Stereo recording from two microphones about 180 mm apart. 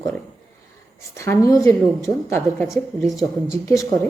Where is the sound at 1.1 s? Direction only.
15° left (ahead or behind).